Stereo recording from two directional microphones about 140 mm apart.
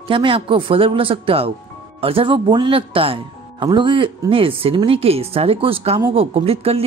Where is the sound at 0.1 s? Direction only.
35° right (ahead or behind).